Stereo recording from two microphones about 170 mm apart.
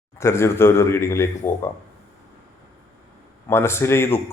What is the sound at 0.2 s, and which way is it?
A man's voice, 15° left (ahead or behind).